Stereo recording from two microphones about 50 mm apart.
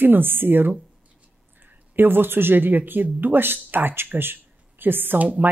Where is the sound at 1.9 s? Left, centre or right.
Right.